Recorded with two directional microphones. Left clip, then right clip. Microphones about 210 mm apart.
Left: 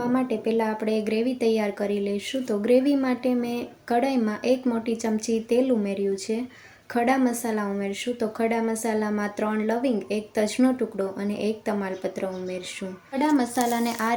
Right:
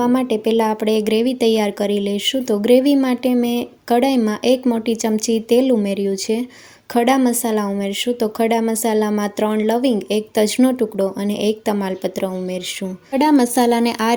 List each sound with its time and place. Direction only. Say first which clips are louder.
0.0 s speech: right 8 dB; 45° right (ahead or behind)